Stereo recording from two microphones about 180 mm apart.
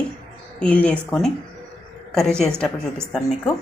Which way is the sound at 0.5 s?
5° left (ahead or behind).